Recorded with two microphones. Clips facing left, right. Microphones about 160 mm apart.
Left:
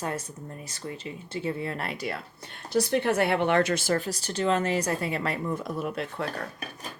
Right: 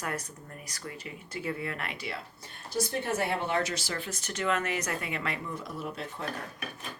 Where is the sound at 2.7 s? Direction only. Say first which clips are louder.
Left 7 dB; 70° left (ahead or behind); by 5.9 s 50° left (ahead or behind).